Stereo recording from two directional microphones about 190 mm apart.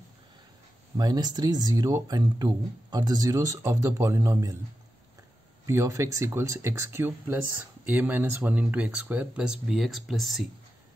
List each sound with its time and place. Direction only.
0.9 s speech: 20° right (ahead or behind)
5.7 s speech: 15° right (ahead or behind); by 10.4 s centre (ahead or behind)